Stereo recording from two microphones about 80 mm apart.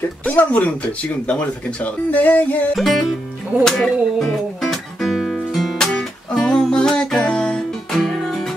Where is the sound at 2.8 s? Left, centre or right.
Centre.